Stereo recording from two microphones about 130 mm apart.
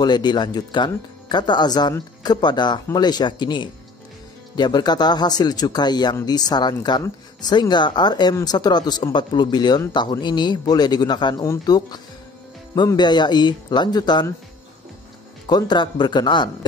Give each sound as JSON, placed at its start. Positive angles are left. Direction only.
{"t": 0.0, "sound": "speech", "side_deg": 35}
{"t": 15.4, "sound": "speech", "side_deg": 35}